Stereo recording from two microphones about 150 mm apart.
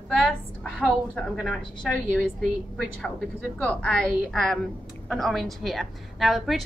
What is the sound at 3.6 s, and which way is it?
A woman's voice, 5° left (ahead or behind).